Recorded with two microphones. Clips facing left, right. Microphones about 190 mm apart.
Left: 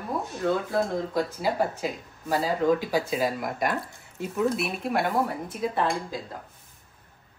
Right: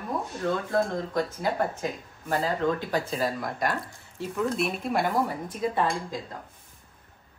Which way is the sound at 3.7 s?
20° left (ahead or behind).